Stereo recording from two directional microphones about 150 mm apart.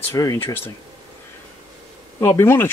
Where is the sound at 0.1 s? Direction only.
20° left (ahead or behind).